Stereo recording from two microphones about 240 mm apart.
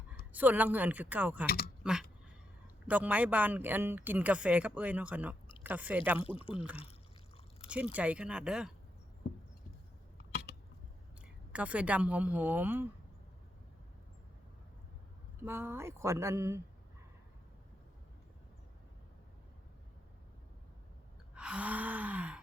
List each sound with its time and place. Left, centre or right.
0.3 s speech: centre
1.5 s speech: left
1.8 s a sound: centre
2.8 s speech: centre
6.1 s speech: left
7.9 s speech: centre
11.5 s speech: centre
15.4 s speech: centre
21.3 s gasp: centre